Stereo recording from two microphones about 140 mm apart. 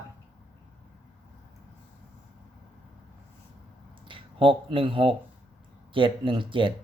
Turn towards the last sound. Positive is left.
turn(degrees=-35)  # may be behind; listen again after turning